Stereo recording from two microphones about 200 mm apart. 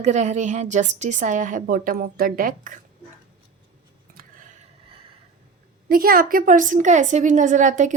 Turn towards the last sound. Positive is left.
turn(degrees=-40)  # may be behind; listen again after turning